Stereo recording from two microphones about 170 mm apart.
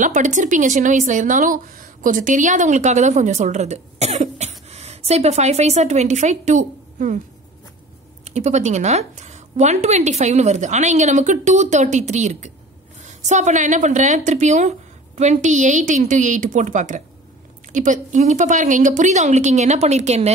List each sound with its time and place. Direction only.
0.0 s a woman's voice: 45° right (ahead or behind)
8.3 s a woman's voice: 40° right (ahead or behind)